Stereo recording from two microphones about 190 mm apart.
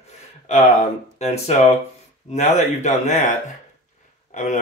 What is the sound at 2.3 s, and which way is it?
Speech, 35° left (ahead or behind).